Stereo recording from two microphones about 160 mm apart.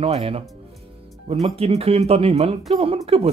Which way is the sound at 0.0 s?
40° right (ahead or behind).